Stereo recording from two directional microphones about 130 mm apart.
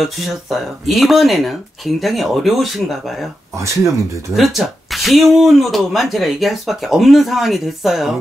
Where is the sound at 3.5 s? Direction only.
25° right (ahead or behind).